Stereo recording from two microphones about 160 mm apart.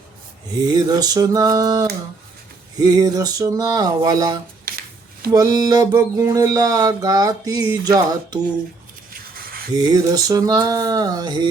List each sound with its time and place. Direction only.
0.6 s speech: 25° right (ahead or behind)
9.3 s a sound: 65° right (ahead or behind)
9.7 s speech: 25° right (ahead or behind)